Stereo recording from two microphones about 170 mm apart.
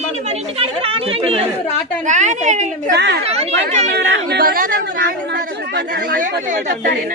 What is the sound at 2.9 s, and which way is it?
Speech, 80° right.